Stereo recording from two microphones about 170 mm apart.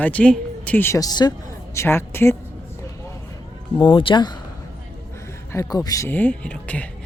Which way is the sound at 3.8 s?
30° left (ahead or behind).